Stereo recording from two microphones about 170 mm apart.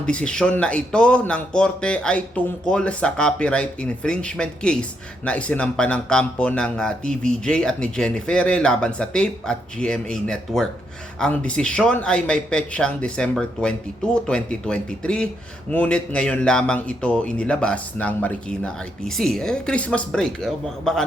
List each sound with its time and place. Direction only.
0.0 s speech: 5° left (ahead or behind)